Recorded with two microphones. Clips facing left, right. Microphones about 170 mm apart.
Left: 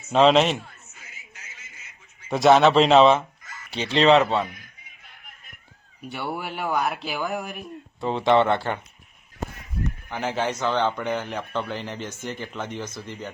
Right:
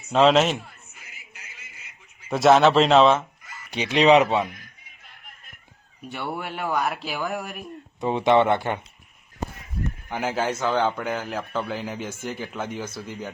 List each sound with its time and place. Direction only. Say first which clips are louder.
0.1 s a sound: even; centre (ahead or behind)
2.3 s speech: even; centre (ahead or behind)
3.4 s speech: right 1 dB; 10° right (ahead or behind)
6.0 s speech: even; centre (ahead or behind)
8.0 s speech: right 1 dB; 15° right (ahead or behind)
10.1 s speech: right 1 dB; 10° right (ahead or behind)